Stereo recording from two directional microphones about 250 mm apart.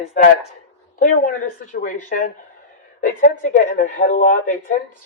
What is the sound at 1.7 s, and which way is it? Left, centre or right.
Speech, left.